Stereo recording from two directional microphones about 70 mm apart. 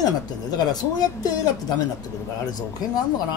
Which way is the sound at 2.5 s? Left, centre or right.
Left.